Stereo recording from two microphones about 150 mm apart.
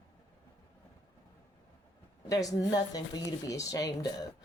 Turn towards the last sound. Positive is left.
turn(degrees=25)  # may be behind; listen again after turning